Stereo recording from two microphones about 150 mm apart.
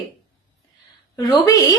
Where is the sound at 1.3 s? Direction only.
25° left (ahead or behind).